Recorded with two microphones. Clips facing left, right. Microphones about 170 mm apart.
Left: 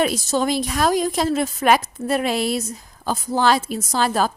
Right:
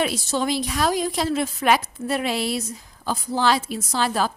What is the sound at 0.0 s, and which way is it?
A woman's voice, 40° left (ahead or behind).